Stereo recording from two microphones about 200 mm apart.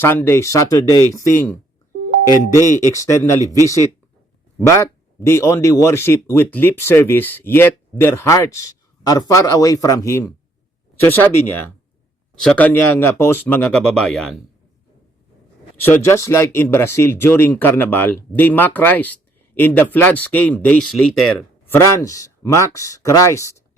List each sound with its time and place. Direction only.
0.0 s speech: 10° left (ahead or behind)
2.9 s speech: 15° left (ahead or behind)
3.4 s speech: 15° right (ahead or behind)
4.6 s speech: 15° left (ahead or behind)
15.9 s speech: 15° left (ahead or behind)
21.8 s speech: 15° left (ahead or behind)